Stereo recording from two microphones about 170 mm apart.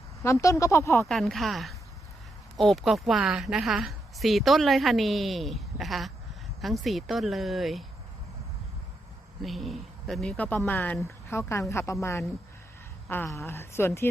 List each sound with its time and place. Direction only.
0.2 s a woman's voice: 15° left (ahead or behind)
1.0 s a woman's voice: centre (ahead or behind)
9.4 s a woman's voice: centre (ahead or behind)